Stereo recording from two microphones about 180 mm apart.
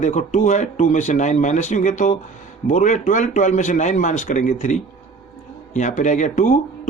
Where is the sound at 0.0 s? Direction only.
40° left (ahead or behind).